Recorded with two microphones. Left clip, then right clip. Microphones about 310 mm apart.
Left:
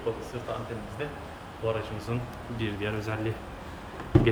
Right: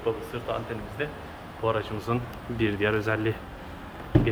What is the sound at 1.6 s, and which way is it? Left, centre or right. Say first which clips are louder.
Speech: right 4 dB; centre.